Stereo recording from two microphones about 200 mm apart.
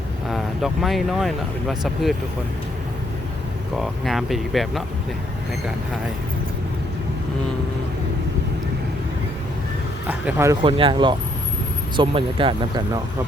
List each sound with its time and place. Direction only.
0.3 s speech: centre (ahead or behind)
3.8 s speech: centre (ahead or behind)
10.1 s speech: 10° right (ahead or behind)
10.6 s speech: 25° right (ahead or behind)